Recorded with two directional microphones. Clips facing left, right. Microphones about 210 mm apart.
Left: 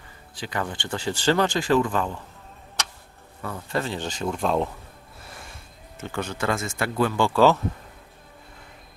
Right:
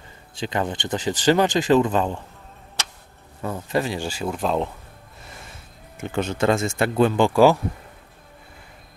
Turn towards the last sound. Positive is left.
turn(degrees=-15)  # may be behind; listen again after turning